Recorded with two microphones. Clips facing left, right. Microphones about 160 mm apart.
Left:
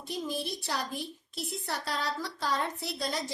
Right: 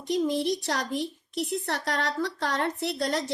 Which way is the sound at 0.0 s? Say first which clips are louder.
Right 9 dB; 70° right (ahead or behind).